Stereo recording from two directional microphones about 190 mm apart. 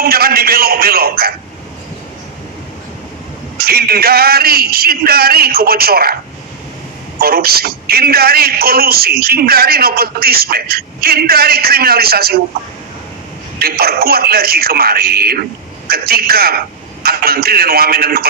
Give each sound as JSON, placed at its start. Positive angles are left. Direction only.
{"t": 0.0, "sound": "a man's voice", "side_deg": -55}
{"t": 3.6, "sound": "a man's voice", "side_deg": -55}
{"t": 7.2, "sound": "a man's voice", "side_deg": -55}
{"t": 13.6, "sound": "a man's voice", "side_deg": -55}